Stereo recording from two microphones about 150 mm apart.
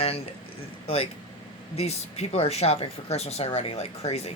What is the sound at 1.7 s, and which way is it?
Speech, 45° left (ahead or behind).